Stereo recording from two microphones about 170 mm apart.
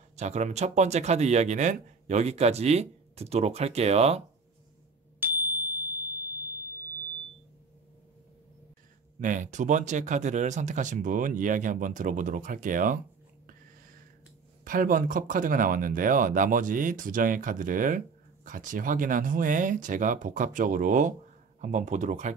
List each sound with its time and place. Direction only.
0.1 s speech: 40° right (ahead or behind)
5.2 s a sound: 10° right (ahead or behind)
9.2 s speech: 50° right (ahead or behind)
14.6 s speech: 55° right (ahead or behind)